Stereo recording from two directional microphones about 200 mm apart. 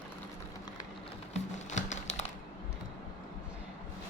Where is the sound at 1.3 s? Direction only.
35° left (ahead or behind).